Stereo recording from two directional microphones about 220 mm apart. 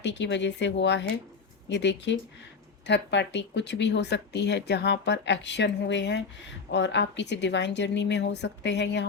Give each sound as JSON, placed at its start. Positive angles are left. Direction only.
{"t": 0.0, "sound": "speech", "side_deg": 55}